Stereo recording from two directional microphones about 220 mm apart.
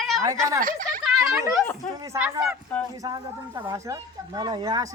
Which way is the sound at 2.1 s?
10° right (ahead or behind).